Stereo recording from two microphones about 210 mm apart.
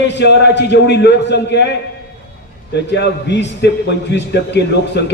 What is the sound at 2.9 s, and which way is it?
Speech, 55° left (ahead or behind).